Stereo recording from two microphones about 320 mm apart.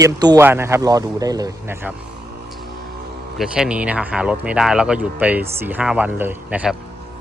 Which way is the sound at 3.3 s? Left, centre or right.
Centre.